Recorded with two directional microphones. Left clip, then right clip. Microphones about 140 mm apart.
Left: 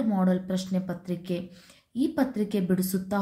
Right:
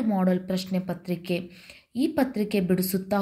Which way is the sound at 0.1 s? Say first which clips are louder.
Right 2 dB; 20° right (ahead or behind).